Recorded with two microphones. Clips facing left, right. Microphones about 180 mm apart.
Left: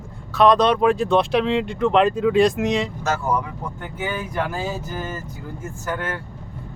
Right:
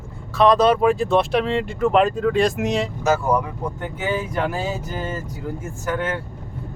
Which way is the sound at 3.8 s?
20° right (ahead or behind).